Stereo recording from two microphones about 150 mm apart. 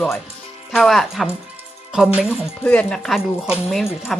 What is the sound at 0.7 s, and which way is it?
Speech, centre (ahead or behind).